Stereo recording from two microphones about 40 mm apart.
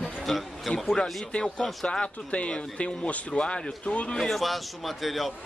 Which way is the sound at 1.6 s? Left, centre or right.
Centre.